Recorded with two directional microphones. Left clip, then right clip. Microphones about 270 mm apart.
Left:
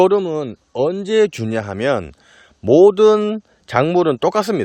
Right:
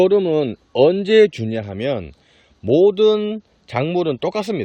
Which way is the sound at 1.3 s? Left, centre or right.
Centre.